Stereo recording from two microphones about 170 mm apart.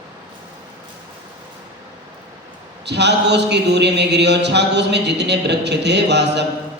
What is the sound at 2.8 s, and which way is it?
A man's voice, 90° right.